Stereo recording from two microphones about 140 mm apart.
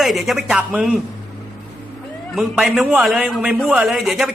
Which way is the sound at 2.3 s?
Centre (ahead or behind).